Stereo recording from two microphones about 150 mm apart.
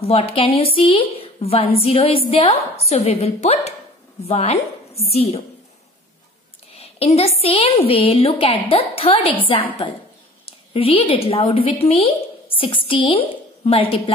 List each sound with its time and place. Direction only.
0.0 s a woman's voice: 40° left (ahead or behind)
6.8 s a woman's voice: 40° left (ahead or behind)